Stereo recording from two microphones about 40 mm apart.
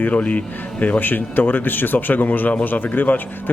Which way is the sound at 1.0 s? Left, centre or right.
Left.